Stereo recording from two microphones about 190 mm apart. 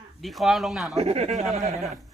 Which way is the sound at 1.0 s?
35° right (ahead or behind).